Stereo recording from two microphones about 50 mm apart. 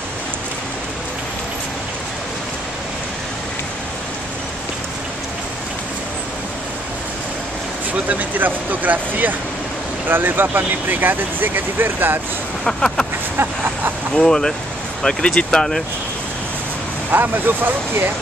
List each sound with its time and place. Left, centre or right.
8.1 s speech: right
12.6 s speech: centre
14.1 s speech: centre
17.1 s speech: right